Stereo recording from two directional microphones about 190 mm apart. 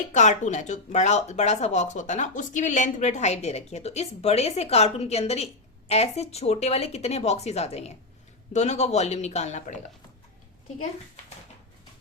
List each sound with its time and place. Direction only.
0.1 s speech: 40° left (ahead or behind)